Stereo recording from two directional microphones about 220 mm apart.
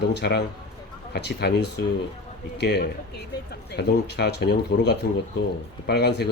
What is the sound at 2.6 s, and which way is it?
Speech, 50° left (ahead or behind).